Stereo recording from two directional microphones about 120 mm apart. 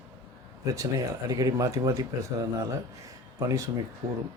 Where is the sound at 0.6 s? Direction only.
30° right (ahead or behind).